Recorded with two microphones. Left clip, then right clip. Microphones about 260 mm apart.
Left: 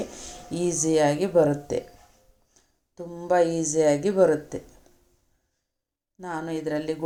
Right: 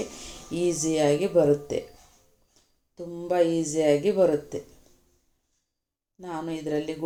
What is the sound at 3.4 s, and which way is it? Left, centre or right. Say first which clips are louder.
Speech: even; left.